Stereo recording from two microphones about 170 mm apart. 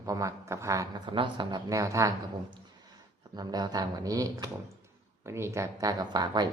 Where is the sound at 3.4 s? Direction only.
25° right (ahead or behind).